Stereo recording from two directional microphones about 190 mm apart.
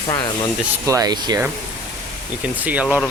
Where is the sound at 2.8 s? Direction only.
5° left (ahead or behind).